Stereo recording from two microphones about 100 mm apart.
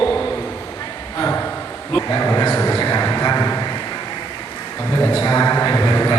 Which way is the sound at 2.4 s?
40° left (ahead or behind).